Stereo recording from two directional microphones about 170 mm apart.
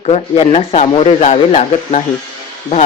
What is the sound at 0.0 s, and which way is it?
Speech, 35° left (ahead or behind).